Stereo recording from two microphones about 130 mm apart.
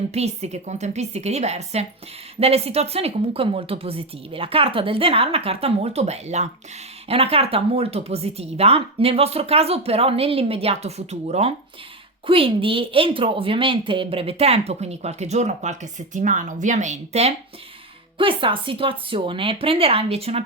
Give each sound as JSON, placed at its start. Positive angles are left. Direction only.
{"t": 0.1, "sound": "a woman's voice", "side_deg": -55}
{"t": 7.1, "sound": "a woman's voice", "side_deg": -50}
{"t": 12.2, "sound": "a woman's voice", "side_deg": -45}
{"t": 18.2, "sound": "a woman's voice", "side_deg": -40}